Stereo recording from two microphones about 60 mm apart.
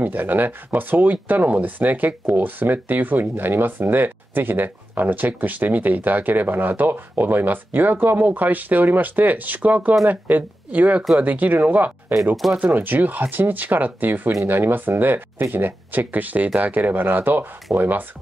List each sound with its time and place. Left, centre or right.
0.0 s speech: right